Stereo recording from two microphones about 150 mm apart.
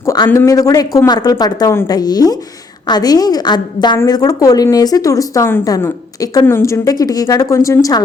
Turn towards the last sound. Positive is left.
turn(degrees=20)  # may be behind; listen again after turning